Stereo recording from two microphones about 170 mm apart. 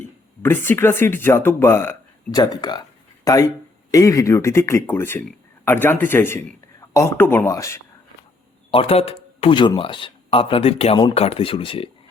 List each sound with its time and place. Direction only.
0.4 s speech: 10° left (ahead or behind)
2.4 s speech: 25° left (ahead or behind)
8.7 s speech: 35° left (ahead or behind)